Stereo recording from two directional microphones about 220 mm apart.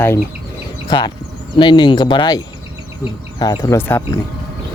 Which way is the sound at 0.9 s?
20° left (ahead or behind).